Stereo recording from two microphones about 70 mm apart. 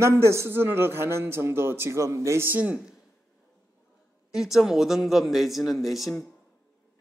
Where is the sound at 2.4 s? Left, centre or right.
Right.